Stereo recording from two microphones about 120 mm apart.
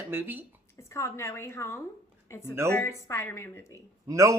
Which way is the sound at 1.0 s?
20° left (ahead or behind).